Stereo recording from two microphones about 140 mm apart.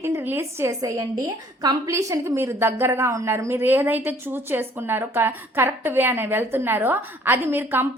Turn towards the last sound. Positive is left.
turn(degrees=-15)  # may be behind; listen again after turning